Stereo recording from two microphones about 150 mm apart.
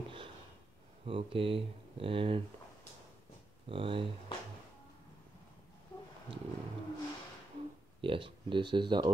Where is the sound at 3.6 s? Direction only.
35° right (ahead or behind).